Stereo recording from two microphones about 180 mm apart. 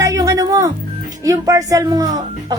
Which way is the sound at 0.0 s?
20° right (ahead or behind).